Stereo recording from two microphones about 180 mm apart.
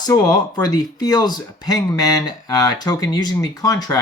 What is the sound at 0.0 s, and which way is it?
Speech, 20° left (ahead or behind).